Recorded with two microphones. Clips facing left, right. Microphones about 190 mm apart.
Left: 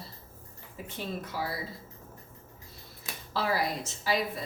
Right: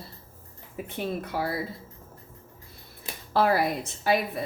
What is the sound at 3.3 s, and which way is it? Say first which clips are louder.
Speech: right 7 dB; 55° right (ahead or behind).